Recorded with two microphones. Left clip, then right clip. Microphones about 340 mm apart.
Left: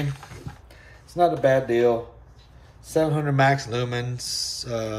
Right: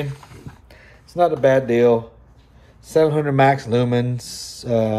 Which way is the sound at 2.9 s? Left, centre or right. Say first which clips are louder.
Right 6 dB; centre.